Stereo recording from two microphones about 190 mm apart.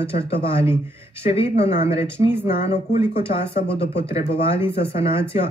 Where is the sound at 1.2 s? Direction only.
30° left (ahead or behind).